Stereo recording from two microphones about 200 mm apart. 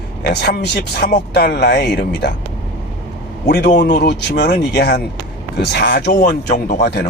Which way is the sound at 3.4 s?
55° left (ahead or behind).